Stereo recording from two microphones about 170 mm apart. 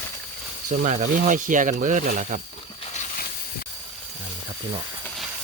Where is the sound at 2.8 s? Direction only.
45° left (ahead or behind).